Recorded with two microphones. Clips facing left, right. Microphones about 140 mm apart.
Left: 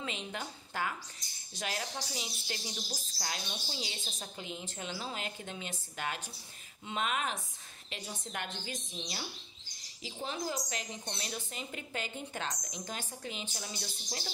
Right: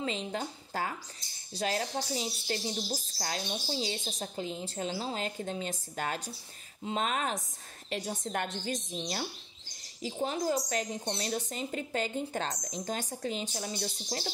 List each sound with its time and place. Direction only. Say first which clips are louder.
0.0 s a woman's voice: right 6 dB; 35° right (ahead or behind)